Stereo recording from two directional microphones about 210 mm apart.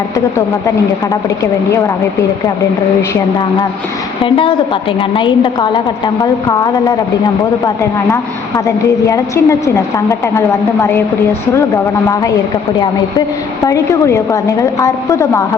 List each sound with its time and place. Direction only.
4.2 s a woman's voice: 25° left (ahead or behind)
8.1 s a woman's voice: 15° left (ahead or behind)
13.7 s a woman's voice: 15° left (ahead or behind)